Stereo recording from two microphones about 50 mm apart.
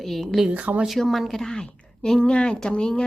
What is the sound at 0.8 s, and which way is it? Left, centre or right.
A woman's voice, centre.